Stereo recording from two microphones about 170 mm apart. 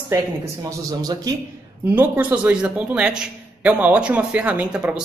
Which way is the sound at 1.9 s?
10° right (ahead or behind).